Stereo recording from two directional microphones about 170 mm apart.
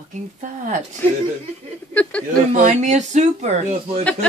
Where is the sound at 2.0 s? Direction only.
5° left (ahead or behind).